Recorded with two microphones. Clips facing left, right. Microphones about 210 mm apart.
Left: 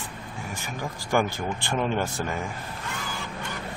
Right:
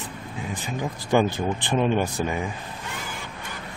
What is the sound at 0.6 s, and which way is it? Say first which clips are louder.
Speech: right 5 dB; 20° right (ahead or behind).